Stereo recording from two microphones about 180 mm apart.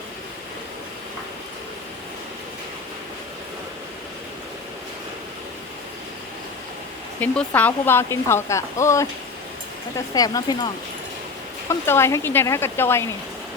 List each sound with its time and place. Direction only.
7.2 s speech: 10° left (ahead or behind)
10.2 s speech: 20° left (ahead or behind)
11.7 s speech: 15° left (ahead or behind)